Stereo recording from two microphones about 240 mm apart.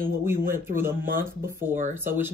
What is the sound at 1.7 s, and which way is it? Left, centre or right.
Speech, right.